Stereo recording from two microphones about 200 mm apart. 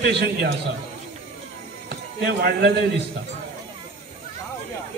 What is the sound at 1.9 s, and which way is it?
Speech, 55° right (ahead or behind).